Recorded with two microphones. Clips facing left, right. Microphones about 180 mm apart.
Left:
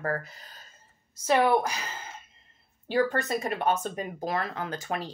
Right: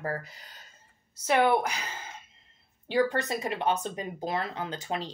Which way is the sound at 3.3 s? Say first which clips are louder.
Left 2 dB; 45° left (ahead or behind).